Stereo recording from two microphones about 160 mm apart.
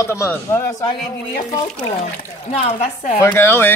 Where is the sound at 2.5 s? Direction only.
40° left (ahead or behind).